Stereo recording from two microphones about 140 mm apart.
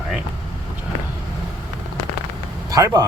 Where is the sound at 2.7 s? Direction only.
25° right (ahead or behind).